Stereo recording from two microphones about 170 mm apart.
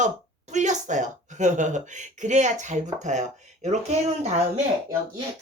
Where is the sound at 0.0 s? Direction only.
45° right (ahead or behind).